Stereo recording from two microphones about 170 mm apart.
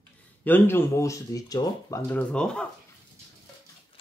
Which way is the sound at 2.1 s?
5° left (ahead or behind).